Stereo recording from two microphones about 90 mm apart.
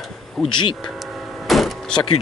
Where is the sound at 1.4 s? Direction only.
Centre (ahead or behind).